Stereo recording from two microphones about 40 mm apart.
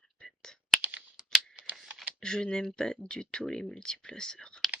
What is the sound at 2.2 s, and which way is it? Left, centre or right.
Speech, centre.